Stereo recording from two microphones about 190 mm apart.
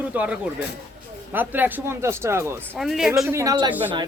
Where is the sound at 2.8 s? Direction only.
Centre (ahead or behind).